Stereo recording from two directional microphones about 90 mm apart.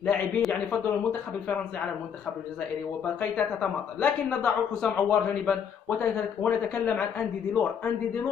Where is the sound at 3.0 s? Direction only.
15° left (ahead or behind).